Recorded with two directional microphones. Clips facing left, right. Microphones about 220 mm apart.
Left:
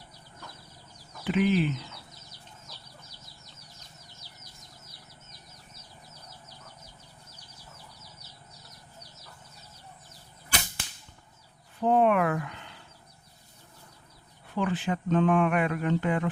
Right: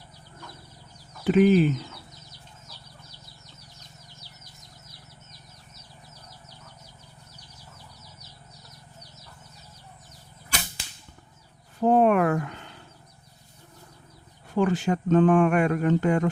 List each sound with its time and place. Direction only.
1.2 s speech: 45° right (ahead or behind)
11.8 s a sound: 40° right (ahead or behind)
14.5 s speech: 45° right (ahead or behind)